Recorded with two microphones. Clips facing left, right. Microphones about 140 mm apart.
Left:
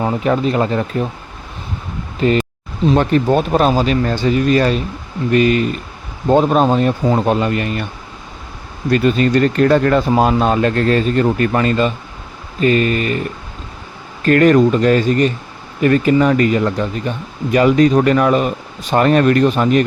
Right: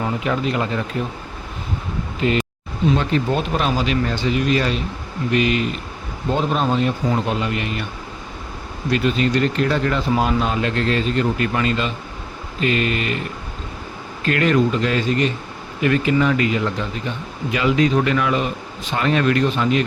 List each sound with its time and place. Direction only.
0.0 s speech: 40° left (ahead or behind)
3.0 s speech: 50° left (ahead or behind)
8.9 s speech: 45° left (ahead or behind)
14.3 s speech: 45° left (ahead or behind)